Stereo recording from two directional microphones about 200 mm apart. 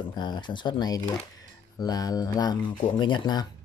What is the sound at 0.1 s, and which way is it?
Speech, 20° left (ahead or behind).